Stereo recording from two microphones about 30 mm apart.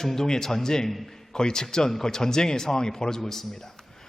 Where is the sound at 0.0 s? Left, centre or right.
Centre.